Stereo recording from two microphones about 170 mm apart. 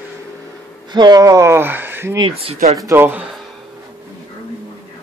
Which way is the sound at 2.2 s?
35° right (ahead or behind).